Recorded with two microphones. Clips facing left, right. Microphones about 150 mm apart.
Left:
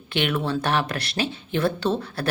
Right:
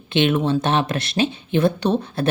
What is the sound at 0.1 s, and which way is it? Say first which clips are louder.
Speech: right 6 dB; 20° right (ahead or behind).